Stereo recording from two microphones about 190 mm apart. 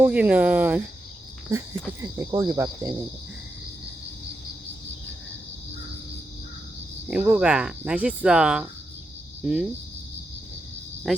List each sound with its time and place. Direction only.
0.0 s speech: 5° right (ahead or behind)
2.0 s speech: 15° right (ahead or behind)
7.1 s speech: 5° right (ahead or behind)
11.1 s speech: centre (ahead or behind)